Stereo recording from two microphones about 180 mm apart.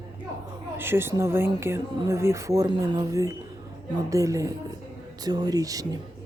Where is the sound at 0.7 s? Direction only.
10° right (ahead or behind).